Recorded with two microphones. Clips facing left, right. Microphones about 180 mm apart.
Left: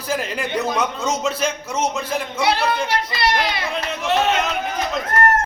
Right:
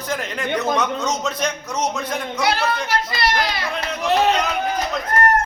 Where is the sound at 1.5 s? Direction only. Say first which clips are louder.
Left 1 dB; 30° left (ahead or behind).